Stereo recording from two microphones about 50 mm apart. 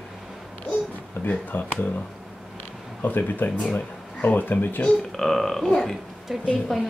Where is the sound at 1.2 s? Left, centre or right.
Left.